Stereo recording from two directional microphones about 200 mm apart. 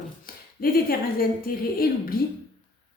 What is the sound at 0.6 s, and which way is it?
A woman's voice, 50° left (ahead or behind).